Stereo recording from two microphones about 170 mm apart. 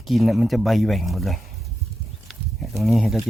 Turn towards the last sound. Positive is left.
turn(degrees=0)  # may be behind; listen again after turning